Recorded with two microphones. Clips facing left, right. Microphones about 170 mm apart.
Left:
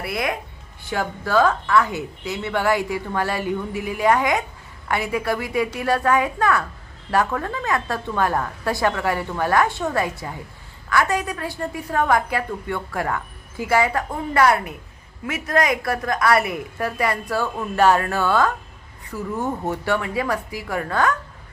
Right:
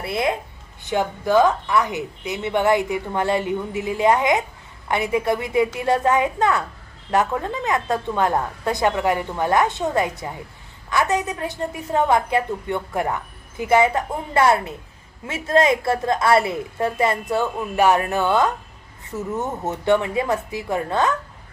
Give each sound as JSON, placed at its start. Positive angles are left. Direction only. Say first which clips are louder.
{"t": 0.0, "sound": "a woman's voice", "louder": "right 3 dB", "side_deg": -25}